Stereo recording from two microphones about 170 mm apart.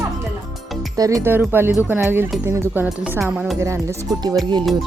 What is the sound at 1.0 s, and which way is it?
Speech, 20° right (ahead or behind).